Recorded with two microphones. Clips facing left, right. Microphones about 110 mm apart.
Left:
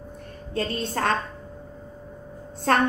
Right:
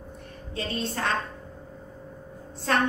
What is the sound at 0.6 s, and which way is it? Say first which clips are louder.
Speech: left 4 dB; 50° left (ahead or behind).